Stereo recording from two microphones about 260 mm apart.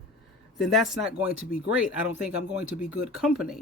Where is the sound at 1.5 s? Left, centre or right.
Left.